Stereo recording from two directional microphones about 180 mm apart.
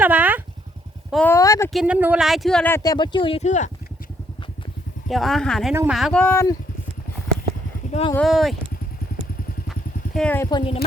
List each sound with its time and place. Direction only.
0.0 s speech: 10° right (ahead or behind)
1.1 s speech: 10° left (ahead or behind)
1.7 s speech: 5° right (ahead or behind); by 3.7 s 40° left (ahead or behind)
5.0 s speech: centre (ahead or behind)
6.2 s speech: 15° left (ahead or behind)
7.9 s speech: 35° left (ahead or behind)
8.1 s speech: centre (ahead or behind)
10.2 s speech: 10° left (ahead or behind)